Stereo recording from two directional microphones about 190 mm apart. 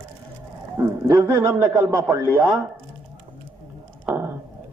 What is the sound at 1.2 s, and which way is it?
Speech, 15° right (ahead or behind).